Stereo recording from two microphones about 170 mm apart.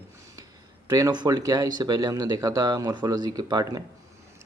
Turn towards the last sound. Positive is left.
turn(degrees=-25)  # may be behind; listen again after turning